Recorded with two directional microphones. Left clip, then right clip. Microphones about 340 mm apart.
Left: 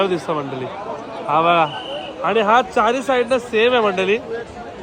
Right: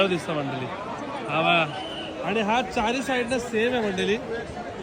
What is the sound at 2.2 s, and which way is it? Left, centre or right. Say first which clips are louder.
Speech: left 9 dB; left.